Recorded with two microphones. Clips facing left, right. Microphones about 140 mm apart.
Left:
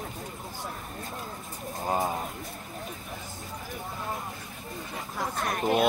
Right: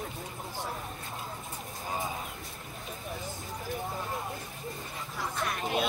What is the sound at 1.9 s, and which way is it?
Speech, 50° left (ahead or behind).